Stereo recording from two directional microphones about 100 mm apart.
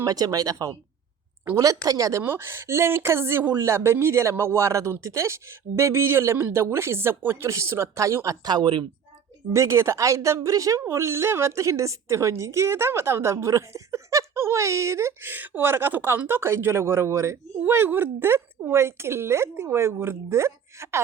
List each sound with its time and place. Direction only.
0.0 s speech: 40° right (ahead or behind)
2.2 s speech: 25° right (ahead or behind); by 8.9 s 45° right (ahead or behind)
9.5 s speech: 30° right (ahead or behind)